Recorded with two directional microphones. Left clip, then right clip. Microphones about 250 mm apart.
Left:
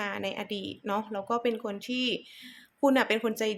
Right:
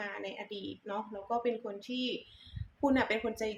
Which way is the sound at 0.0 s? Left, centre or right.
Left.